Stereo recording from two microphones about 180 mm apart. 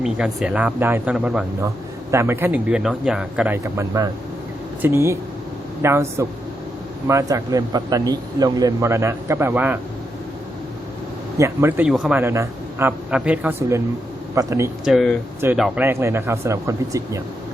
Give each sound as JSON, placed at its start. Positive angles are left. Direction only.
{"t": 0.0, "sound": "speech", "side_deg": -5}
{"t": 11.3, "sound": "speech", "side_deg": -15}
{"t": 12.2, "sound": "a man's voice", "side_deg": -15}
{"t": 14.8, "sound": "speech", "side_deg": 0}
{"t": 15.8, "sound": "speech", "side_deg": -15}